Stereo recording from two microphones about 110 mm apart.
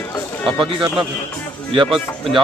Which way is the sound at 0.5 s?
50° right (ahead or behind).